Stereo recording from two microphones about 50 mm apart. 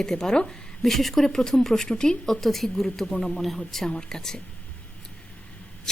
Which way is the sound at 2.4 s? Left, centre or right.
Centre.